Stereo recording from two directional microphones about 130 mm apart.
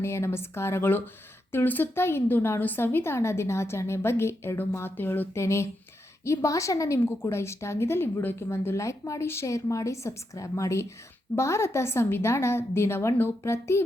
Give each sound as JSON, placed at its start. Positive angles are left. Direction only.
{"t": 0.0, "sound": "a woman's voice", "side_deg": 20}